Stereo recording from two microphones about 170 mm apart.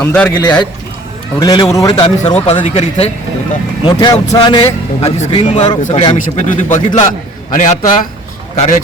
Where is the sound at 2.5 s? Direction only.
35° left (ahead or behind).